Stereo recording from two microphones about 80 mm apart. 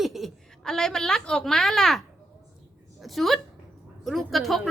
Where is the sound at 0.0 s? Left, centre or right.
Centre.